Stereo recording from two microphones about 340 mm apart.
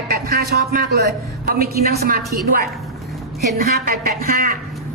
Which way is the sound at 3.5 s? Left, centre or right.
Right.